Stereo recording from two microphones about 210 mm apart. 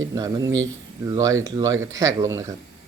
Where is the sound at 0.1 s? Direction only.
20° right (ahead or behind).